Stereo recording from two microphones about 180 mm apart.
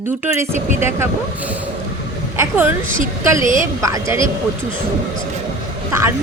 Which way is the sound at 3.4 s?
45° right (ahead or behind).